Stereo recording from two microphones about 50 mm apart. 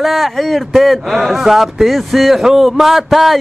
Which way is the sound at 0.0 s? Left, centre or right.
Centre.